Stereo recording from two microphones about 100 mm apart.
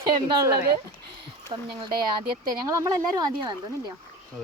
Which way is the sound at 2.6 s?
35° right (ahead or behind).